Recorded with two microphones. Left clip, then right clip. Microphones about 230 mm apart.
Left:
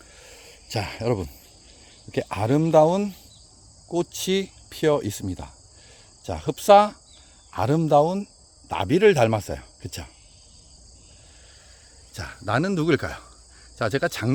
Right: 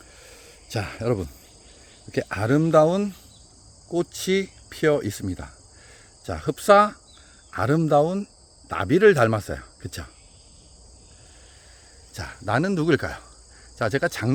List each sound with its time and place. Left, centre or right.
0.2 s a sound: centre
2.0 s speech: centre
12.1 s speech: centre